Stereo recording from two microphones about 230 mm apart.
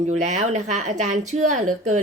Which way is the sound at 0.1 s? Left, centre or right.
Right.